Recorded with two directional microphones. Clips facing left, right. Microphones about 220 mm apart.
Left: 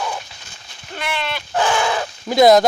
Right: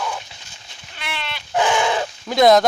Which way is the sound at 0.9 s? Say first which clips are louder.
Left 7 dB; 45° left (ahead or behind).